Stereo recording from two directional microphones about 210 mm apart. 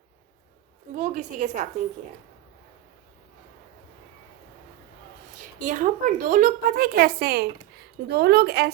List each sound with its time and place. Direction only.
0.9 s a woman's voice: 35° right (ahead or behind)
5.5 s speech: 40° right (ahead or behind)